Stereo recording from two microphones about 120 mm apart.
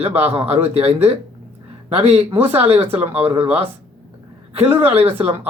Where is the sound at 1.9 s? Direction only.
60° right (ahead or behind).